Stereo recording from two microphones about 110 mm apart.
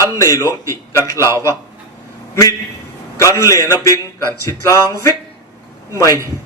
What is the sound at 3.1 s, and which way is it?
Speech, 30° left (ahead or behind).